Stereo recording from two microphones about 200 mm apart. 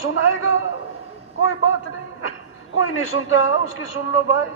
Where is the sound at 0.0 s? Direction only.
90° left.